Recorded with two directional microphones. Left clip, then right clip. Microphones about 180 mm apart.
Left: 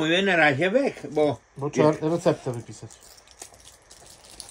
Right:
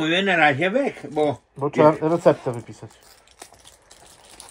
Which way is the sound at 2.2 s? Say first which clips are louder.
Right 7 dB; 20° right (ahead or behind).